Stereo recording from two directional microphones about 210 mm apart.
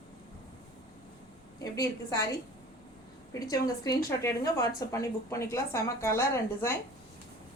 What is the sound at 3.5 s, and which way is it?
A woman's voice, 15° left (ahead or behind).